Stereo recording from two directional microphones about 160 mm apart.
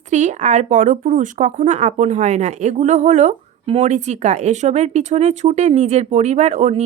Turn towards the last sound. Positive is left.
turn(degrees=-45)  # may be behind; listen again after turning